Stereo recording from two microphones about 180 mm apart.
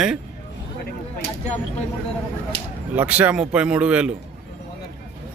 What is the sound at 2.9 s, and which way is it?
Speech, 10° right (ahead or behind).